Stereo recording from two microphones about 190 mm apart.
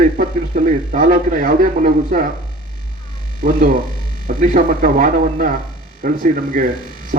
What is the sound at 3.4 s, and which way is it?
Speech, 45° right (ahead or behind).